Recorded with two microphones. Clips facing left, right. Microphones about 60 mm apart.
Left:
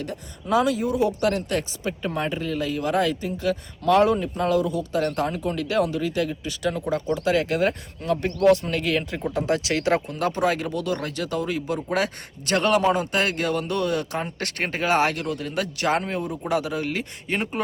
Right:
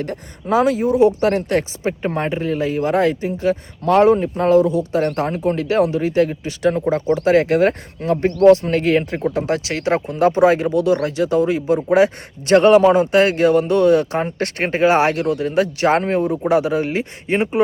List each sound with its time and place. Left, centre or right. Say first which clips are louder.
0.0 s speech: right 6 dB; right